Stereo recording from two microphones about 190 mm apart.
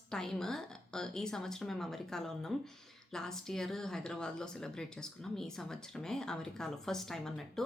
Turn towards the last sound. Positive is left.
turn(degrees=0)  # may be behind; listen again after turning